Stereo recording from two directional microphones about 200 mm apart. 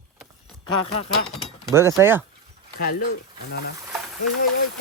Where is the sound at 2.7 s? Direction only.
45° left (ahead or behind).